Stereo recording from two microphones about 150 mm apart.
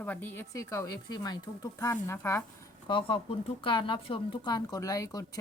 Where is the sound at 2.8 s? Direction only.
35° left (ahead or behind).